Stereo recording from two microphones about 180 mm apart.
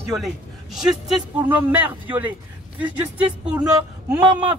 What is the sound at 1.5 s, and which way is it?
Speech, 10° right (ahead or behind).